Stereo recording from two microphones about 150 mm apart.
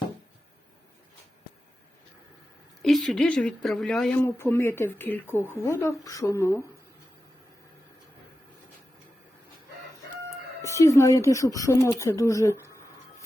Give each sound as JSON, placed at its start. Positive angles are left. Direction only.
{"t": 2.8, "sound": "speech", "side_deg": 0}
{"t": 4.2, "sound": "speech", "side_deg": 15}
{"t": 10.6, "sound": "speech", "side_deg": 20}